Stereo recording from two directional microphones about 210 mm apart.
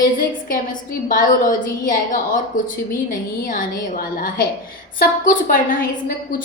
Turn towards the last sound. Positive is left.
turn(degrees=40)  # may be behind; listen again after turning